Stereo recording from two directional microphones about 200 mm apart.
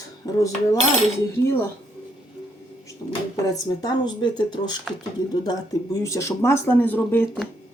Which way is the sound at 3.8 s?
20° left (ahead or behind).